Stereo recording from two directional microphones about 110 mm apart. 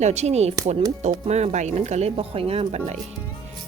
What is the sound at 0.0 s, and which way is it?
Speech, 90° right.